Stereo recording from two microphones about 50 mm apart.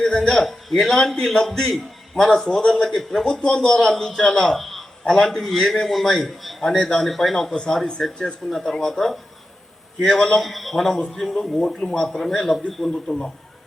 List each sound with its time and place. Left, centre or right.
0.0 s a man's voice: centre
4.5 s a sound: centre
5.0 s a man's voice: centre
7.5 s a man's voice: centre
10.3 s a man's voice: centre